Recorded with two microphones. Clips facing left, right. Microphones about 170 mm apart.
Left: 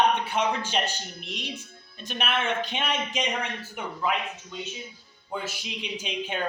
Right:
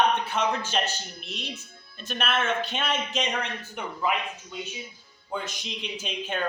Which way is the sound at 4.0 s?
5° right (ahead or behind).